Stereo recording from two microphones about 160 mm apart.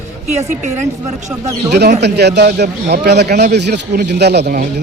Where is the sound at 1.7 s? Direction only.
90° right.